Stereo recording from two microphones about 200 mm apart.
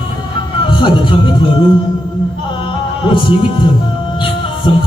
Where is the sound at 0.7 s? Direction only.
25° left (ahead or behind).